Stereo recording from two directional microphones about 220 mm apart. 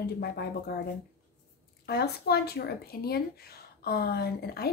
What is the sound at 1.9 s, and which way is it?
Speech, 45° left (ahead or behind).